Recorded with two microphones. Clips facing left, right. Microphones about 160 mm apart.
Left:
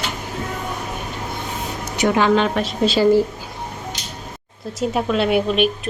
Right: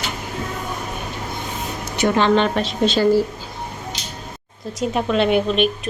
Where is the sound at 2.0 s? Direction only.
5° left (ahead or behind).